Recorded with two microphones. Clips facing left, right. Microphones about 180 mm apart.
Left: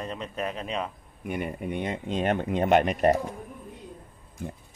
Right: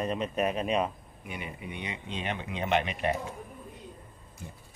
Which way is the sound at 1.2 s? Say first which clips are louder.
Left 9 dB; 50° left (ahead or behind).